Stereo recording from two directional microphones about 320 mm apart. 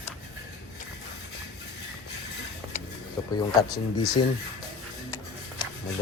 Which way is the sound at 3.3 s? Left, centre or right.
Centre.